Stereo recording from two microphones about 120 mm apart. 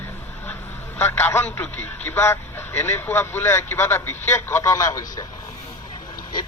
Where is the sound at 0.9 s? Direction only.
15° left (ahead or behind).